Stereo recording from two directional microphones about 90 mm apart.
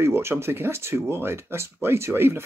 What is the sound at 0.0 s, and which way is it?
Speech, 30° right (ahead or behind).